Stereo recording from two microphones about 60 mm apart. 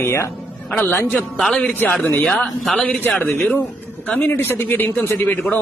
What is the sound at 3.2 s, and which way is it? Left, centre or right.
Speech, left.